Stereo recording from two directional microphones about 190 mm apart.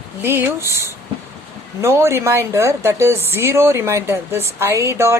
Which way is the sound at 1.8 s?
15° right (ahead or behind).